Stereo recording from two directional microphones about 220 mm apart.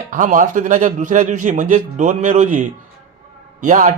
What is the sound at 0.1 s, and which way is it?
A man's voice, 35° right (ahead or behind).